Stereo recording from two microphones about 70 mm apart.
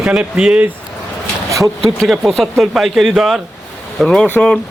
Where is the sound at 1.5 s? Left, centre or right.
Right.